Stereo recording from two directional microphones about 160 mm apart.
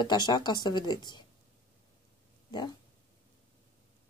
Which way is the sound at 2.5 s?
25° left (ahead or behind).